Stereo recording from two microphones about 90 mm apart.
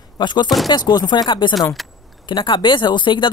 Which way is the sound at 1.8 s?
Centre (ahead or behind).